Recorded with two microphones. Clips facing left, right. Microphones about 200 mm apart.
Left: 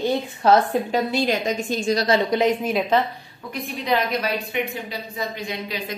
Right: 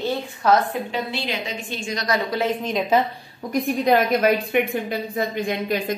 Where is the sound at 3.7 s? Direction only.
50° right (ahead or behind).